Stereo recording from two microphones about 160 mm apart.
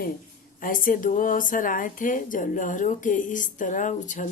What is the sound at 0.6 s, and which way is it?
A woman's voice, 60° left (ahead or behind).